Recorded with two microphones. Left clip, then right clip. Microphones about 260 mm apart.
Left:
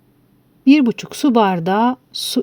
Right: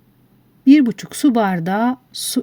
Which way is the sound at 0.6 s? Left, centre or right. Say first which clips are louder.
Right 1 dB; left.